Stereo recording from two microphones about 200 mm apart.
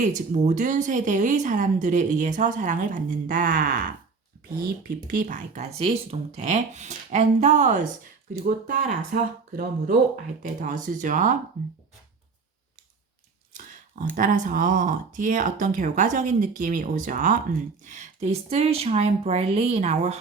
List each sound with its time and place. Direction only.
0.0 s speech: 35° right (ahead or behind)
5.0 s speech: 45° right (ahead or behind)
14.0 s speech: 40° right (ahead or behind)